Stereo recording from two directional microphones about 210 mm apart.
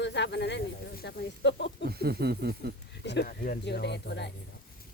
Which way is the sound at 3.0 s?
55° left (ahead or behind).